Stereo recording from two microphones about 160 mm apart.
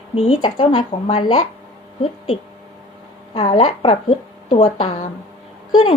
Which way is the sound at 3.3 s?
35° left (ahead or behind).